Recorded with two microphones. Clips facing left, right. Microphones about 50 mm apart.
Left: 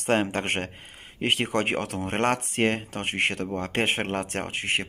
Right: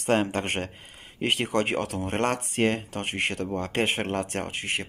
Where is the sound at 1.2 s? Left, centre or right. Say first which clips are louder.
Even; left.